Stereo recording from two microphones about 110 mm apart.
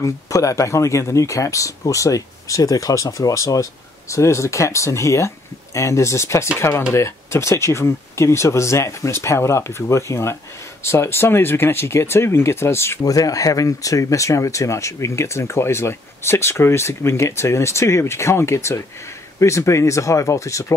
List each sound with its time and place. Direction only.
0.0 s speech: 30° left (ahead or behind)